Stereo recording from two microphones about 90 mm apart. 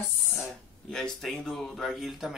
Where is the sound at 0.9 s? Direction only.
5° left (ahead or behind).